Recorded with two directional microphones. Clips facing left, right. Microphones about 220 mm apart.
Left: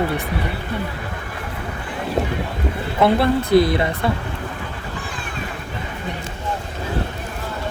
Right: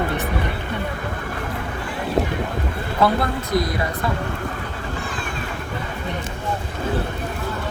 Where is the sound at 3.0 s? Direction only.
25° left (ahead or behind).